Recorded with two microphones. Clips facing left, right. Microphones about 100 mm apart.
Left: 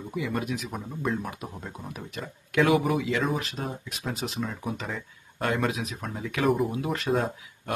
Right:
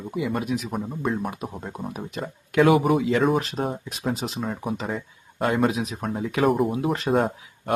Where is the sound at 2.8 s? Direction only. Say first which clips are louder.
Right 5 dB; 40° right (ahead or behind).